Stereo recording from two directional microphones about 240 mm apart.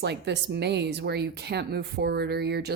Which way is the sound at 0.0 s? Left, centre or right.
Right.